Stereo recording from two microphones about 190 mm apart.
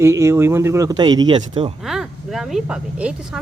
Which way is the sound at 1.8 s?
Centre (ahead or behind).